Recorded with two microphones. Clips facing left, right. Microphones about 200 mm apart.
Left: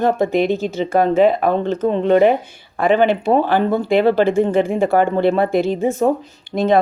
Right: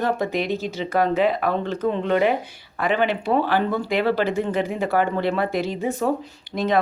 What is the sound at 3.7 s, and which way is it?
Speech, 25° left (ahead or behind).